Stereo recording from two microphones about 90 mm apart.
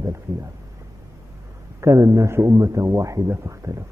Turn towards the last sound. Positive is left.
turn(degrees=-35)  # may be behind; listen again after turning